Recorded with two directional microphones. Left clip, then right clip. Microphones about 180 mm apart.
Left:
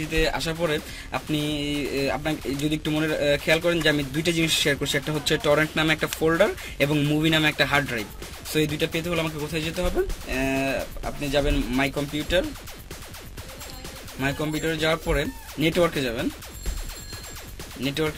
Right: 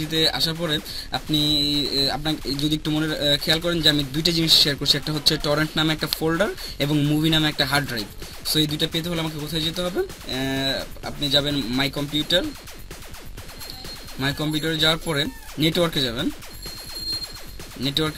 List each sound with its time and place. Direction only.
0.1 s speech: 35° right (ahead or behind)
14.2 s speech: 40° right (ahead or behind)
17.8 s speech: 40° right (ahead or behind)